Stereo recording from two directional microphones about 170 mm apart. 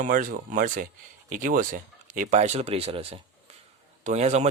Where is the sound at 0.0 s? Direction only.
55° right (ahead or behind).